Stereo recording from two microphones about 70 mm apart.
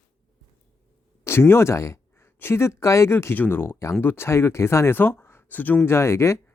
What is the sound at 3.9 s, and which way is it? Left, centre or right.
Speech, left.